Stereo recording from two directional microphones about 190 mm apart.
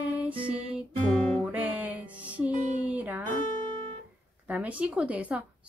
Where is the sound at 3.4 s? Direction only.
45° left (ahead or behind).